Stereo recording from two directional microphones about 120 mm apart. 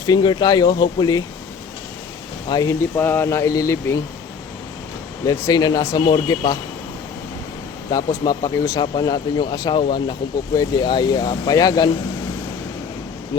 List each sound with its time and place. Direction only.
0.0 s speech: 35° left (ahead or behind)
2.5 s speech: 30° left (ahead or behind)
5.2 s speech: 30° left (ahead or behind)
7.9 s speech: 35° left (ahead or behind)